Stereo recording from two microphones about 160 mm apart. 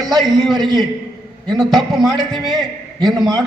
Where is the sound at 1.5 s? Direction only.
Centre (ahead or behind).